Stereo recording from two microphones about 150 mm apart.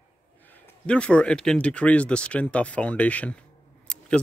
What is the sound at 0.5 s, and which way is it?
Speech, 10° left (ahead or behind).